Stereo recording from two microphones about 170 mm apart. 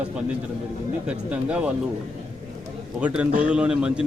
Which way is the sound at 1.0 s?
5° right (ahead or behind).